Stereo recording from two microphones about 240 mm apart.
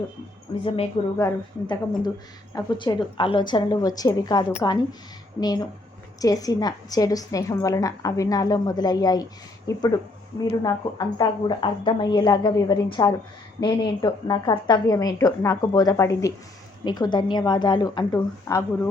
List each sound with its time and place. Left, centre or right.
1.2 s a woman's voice: centre